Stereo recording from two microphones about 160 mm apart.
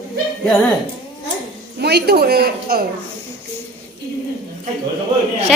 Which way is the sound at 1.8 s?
90° right.